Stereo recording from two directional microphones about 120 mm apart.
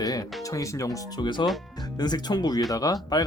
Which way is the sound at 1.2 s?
40° left (ahead or behind).